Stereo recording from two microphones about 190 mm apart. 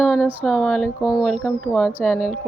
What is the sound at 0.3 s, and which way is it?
Speech, centre (ahead or behind).